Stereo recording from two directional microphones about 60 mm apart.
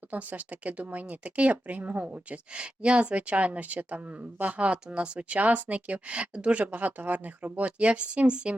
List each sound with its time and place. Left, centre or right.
0.1 s speech: right